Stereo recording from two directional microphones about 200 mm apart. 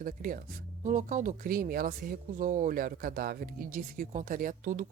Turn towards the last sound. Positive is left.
turn(degrees=-40)  # may be behind; listen again after turning